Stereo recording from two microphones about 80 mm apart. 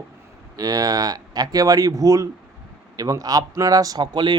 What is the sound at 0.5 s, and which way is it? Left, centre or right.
Speech, right.